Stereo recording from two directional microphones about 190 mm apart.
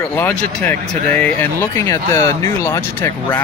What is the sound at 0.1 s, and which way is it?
Speech, 10° left (ahead or behind).